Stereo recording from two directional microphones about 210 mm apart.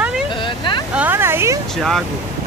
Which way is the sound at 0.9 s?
10° right (ahead or behind).